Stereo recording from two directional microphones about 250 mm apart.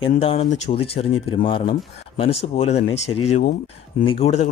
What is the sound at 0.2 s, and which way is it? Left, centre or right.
Speech, left.